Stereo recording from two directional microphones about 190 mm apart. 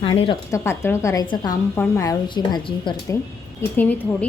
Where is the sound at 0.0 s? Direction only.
30° left (ahead or behind).